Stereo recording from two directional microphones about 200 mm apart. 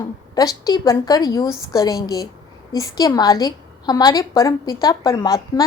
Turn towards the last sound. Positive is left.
turn(degrees=20)  # may be behind; listen again after turning